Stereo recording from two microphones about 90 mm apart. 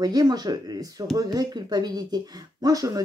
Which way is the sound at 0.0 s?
50° right (ahead or behind).